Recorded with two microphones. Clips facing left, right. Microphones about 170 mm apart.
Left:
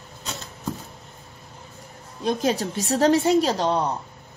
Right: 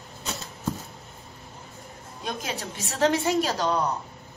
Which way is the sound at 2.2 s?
35° left (ahead or behind).